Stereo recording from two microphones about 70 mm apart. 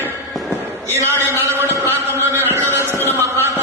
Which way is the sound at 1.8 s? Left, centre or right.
Left.